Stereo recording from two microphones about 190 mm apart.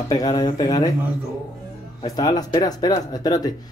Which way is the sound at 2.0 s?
20° left (ahead or behind).